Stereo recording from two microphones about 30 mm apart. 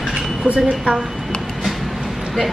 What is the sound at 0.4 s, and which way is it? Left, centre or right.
Speech, right.